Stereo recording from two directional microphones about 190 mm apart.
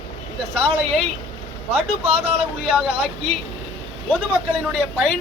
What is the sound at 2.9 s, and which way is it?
Speech, 30° right (ahead or behind).